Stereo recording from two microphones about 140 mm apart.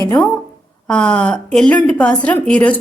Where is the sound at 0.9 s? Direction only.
5° left (ahead or behind).